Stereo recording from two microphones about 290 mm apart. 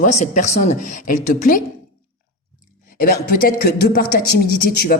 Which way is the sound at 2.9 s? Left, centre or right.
Left.